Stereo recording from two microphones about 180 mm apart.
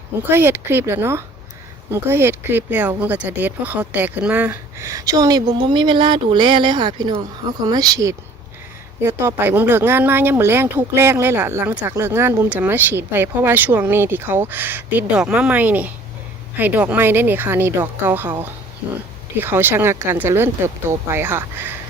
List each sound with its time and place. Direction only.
0.3 s speech: 10° right (ahead or behind)